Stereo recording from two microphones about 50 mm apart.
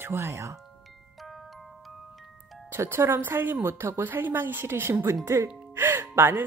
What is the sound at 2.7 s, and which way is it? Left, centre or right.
Speech, right.